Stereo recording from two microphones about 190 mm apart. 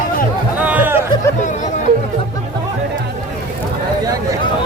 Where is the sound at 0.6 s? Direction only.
10° right (ahead or behind).